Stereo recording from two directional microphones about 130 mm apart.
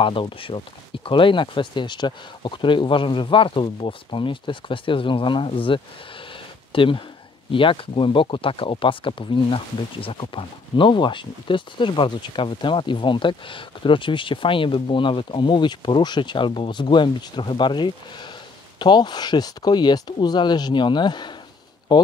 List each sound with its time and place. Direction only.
0.0 s speech: 40° left (ahead or behind)